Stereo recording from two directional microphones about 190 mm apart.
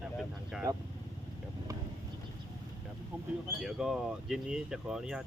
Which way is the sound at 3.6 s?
Centre (ahead or behind).